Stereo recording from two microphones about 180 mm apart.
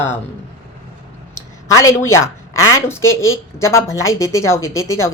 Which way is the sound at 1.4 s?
15° left (ahead or behind).